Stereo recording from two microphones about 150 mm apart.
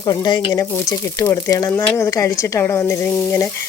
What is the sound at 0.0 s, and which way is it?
Speech, 25° left (ahead or behind).